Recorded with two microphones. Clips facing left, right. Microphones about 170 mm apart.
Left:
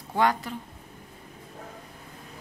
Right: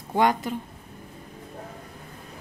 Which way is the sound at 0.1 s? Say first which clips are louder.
Right 3 dB; 20° right (ahead or behind).